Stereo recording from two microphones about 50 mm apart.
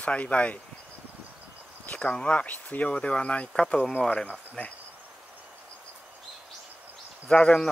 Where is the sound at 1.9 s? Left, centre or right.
Left.